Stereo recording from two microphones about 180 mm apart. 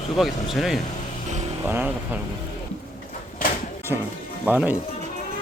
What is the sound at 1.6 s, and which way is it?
Speech, 10° right (ahead or behind).